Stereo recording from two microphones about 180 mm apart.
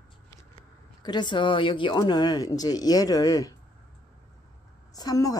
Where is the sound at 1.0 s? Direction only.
25° left (ahead or behind).